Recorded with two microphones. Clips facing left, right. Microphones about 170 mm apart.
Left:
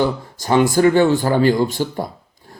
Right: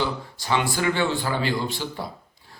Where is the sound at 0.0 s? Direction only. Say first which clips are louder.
Left 8 dB; 45° left (ahead or behind).